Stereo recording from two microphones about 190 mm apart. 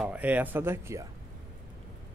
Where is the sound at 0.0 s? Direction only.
5° right (ahead or behind).